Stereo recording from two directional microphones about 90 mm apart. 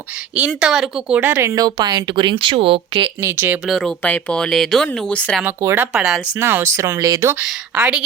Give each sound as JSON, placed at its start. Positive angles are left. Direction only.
{"t": 0.3, "sound": "speech", "side_deg": -10}
{"t": 1.2, "sound": "speech", "side_deg": -25}
{"t": 1.5, "sound": "speech", "side_deg": -50}
{"t": 2.4, "sound": "speech", "side_deg": -70}
{"t": 3.2, "sound": "speech", "side_deg": -30}
{"t": 3.7, "sound": "speech", "side_deg": 5}
{"t": 4.0, "sound": "speech", "side_deg": 15}
{"t": 5.5, "sound": "speech", "side_deg": -20}
{"t": 5.9, "sound": "speech", "side_deg": -5}
{"t": 6.4, "sound": "speech", "side_deg": -30}
{"t": 7.4, "sound": "speech", "side_deg": -10}